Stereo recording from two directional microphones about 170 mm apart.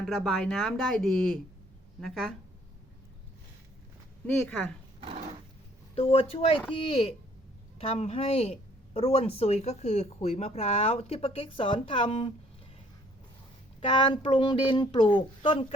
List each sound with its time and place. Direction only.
0.0 s speech: centre (ahead or behind)
4.3 s speech: 5° left (ahead or behind)
5.9 s a woman's voice: 35° left (ahead or behind)
13.8 s speech: 30° left (ahead or behind)